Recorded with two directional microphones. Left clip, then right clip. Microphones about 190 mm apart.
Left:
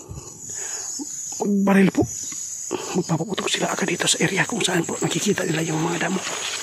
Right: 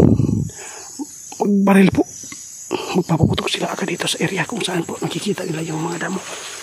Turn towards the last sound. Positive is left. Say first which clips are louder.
# even
turn(degrees=10)  # may be behind; listen again after turning